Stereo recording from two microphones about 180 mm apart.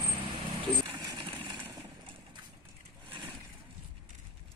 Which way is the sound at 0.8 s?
25° right (ahead or behind).